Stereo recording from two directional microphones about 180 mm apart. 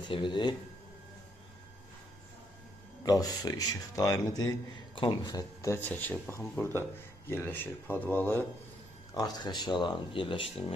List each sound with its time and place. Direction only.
0.1 s speech: 25° left (ahead or behind)
3.1 s speech: 20° left (ahead or behind)
9.1 s speech: 25° left (ahead or behind)